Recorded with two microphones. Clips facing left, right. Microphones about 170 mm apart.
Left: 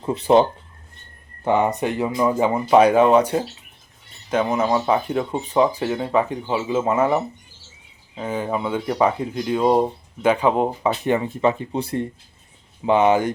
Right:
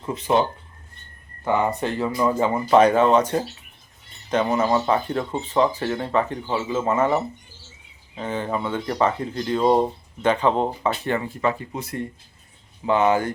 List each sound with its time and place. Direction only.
0.0 s speech: 35° left (ahead or behind)
1.5 s speech: 20° left (ahead or behind)
12.8 s speech: 20° left (ahead or behind)